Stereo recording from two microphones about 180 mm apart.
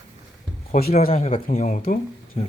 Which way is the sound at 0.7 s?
60° left (ahead or behind).